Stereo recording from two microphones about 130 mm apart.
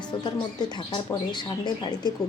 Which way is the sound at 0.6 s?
35° left (ahead or behind).